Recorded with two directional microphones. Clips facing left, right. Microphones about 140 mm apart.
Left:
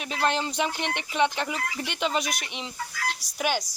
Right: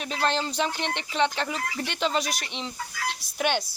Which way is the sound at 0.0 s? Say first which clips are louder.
Even; 10° left (ahead or behind).